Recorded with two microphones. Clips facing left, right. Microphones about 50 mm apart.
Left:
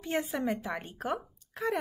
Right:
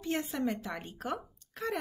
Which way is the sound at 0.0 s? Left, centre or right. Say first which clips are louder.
Left 1 dB; centre.